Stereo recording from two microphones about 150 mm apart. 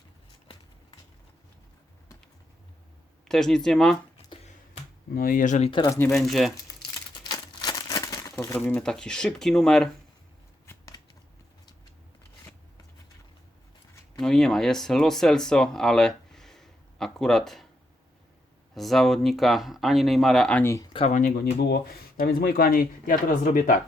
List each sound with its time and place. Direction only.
3.2 s speech: 5° left (ahead or behind)
5.1 s speech: 70° left (ahead or behind); by 5.7 s 50° left (ahead or behind)
6.1 s speech: centre (ahead or behind)
7.3 s crumpling: 25° left (ahead or behind)
8.5 s speech: 10° left (ahead or behind)
10.7 s shuffling cards: 20° left (ahead or behind)
14.2 s speech: 5° left (ahead or behind)
18.7 s speech: centre (ahead or behind)
21.1 s speech: 65° left (ahead or behind)